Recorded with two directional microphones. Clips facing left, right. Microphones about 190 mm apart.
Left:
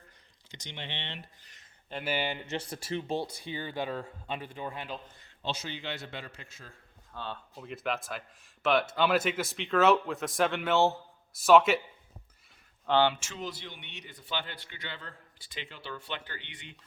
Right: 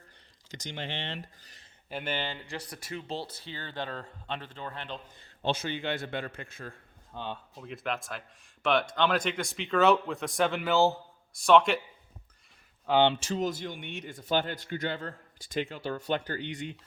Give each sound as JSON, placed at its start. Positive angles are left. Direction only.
{"t": 0.5, "sound": "speech", "side_deg": -45}
{"t": 1.9, "sound": "speech", "side_deg": 0}
{"t": 2.1, "sound": "speech", "side_deg": 15}
{"t": 3.1, "sound": "speech", "side_deg": 15}
{"t": 5.4, "sound": "a man's voice", "side_deg": -55}
{"t": 7.1, "sound": "speech", "side_deg": -15}
{"t": 7.5, "sound": "speech", "side_deg": 0}
{"t": 12.8, "sound": "speech", "side_deg": -10}
{"t": 13.1, "sound": "speech", "side_deg": -35}